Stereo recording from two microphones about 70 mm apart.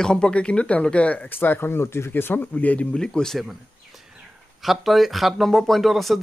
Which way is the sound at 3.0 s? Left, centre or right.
Centre.